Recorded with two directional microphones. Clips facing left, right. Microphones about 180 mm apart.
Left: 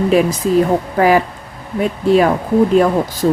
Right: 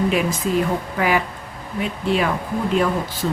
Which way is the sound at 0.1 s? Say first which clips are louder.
Left 7 dB; 35° left (ahead or behind).